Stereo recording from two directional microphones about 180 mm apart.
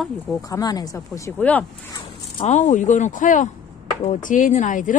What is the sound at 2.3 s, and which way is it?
Speech, 40° left (ahead or behind).